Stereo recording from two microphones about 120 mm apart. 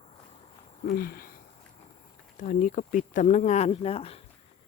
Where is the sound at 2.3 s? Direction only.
90° left; by 4.1 s 55° left (ahead or behind).